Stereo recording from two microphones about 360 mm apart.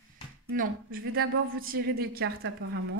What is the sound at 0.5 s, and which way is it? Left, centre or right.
A woman's voice, right.